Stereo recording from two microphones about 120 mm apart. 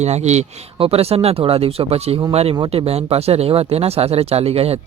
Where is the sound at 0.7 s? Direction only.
55° right (ahead or behind).